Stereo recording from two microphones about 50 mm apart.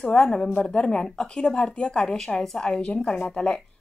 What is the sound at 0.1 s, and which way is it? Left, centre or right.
A woman's voice, centre.